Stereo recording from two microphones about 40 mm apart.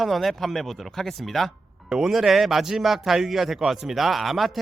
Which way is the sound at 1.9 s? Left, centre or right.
Centre.